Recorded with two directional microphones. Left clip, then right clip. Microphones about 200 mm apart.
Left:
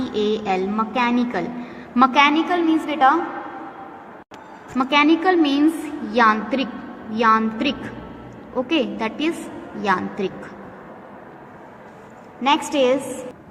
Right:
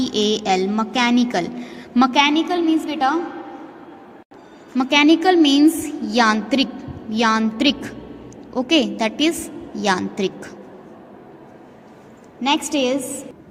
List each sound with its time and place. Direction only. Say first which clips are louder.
0.0 s a woman's voice: right 2 dB; 55° right (ahead or behind); by 3.2 s 40° right (ahead or behind)
4.8 s a woman's voice: right 2 dB; 55° right (ahead or behind)
12.4 s a woman's voice: left 1 dB; 45° right (ahead or behind)